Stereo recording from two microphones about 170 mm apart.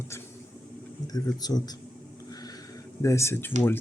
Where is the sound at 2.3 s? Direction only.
20° left (ahead or behind).